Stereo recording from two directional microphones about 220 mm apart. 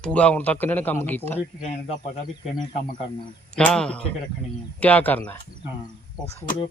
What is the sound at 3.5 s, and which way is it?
Speech, 5° left (ahead or behind).